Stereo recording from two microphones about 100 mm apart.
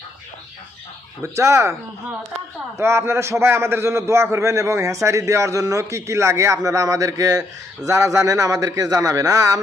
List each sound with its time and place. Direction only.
1.2 s a man's voice: 25° right (ahead or behind)
2.7 s a man's voice: 30° right (ahead or behind)